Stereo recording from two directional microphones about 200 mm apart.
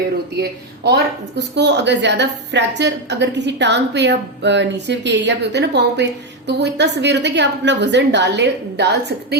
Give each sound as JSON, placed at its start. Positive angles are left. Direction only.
{"t": 0.9, "sound": "a woman's voice", "side_deg": -55}